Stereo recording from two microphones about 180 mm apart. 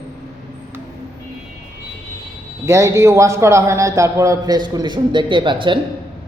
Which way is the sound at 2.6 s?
15° right (ahead or behind).